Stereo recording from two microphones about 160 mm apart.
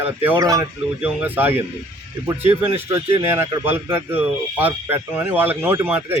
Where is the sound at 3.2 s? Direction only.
15° right (ahead or behind).